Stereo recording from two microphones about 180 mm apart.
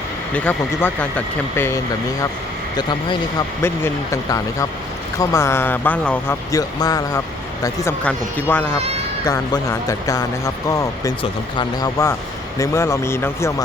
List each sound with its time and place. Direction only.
0.3 s speech: 10° left (ahead or behind)
3.6 s speech: 15° left (ahead or behind)